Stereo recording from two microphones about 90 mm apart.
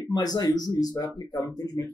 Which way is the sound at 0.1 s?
45° left (ahead or behind).